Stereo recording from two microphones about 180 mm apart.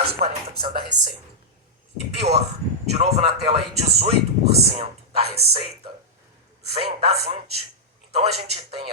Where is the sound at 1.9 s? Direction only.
35° right (ahead or behind).